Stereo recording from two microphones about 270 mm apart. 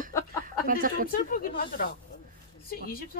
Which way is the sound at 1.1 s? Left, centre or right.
Left.